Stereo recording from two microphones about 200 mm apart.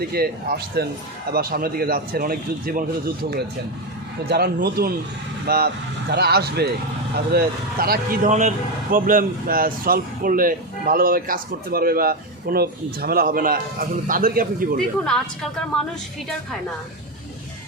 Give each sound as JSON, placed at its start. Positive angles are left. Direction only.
{"t": 0.0, "sound": "speech", "side_deg": -50}
{"t": 4.3, "sound": "speech", "side_deg": -50}
{"t": 14.8, "sound": "a woman's voice", "side_deg": 0}